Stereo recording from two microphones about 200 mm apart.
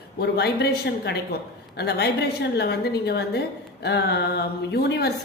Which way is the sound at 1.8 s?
55° left (ahead or behind).